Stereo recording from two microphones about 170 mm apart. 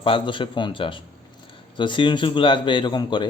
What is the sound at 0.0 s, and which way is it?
A man's voice, 30° left (ahead or behind).